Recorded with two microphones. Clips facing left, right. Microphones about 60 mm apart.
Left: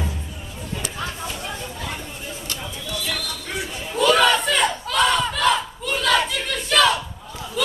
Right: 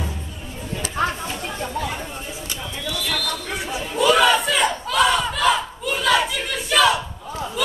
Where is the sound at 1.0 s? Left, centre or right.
Right.